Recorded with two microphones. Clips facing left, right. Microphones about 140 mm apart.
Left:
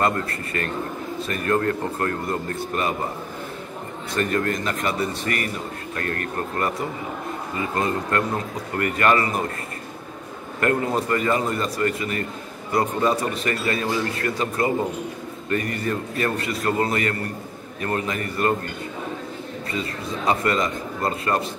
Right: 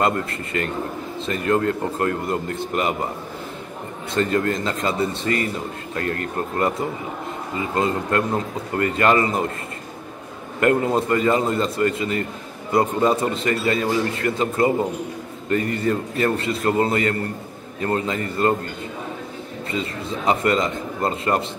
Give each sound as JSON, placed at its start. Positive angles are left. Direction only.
{"t": 0.0, "sound": "a man's voice", "side_deg": -20}
{"t": 4.1, "sound": "a man's voice", "side_deg": -25}
{"t": 10.6, "sound": "a man's voice", "side_deg": -20}
{"t": 19.7, "sound": "a man's voice", "side_deg": -25}